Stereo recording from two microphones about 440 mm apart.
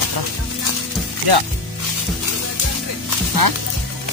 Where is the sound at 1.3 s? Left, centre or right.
Right.